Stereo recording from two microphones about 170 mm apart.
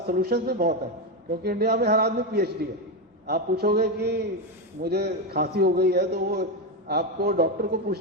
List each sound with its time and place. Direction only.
0.1 s a man's voice: 65° right (ahead or behind)